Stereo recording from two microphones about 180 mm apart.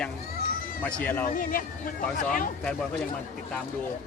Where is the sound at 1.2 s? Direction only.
50° left (ahead or behind).